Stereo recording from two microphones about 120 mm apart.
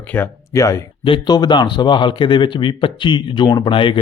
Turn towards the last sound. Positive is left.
turn(degrees=45)  # may be behind; listen again after turning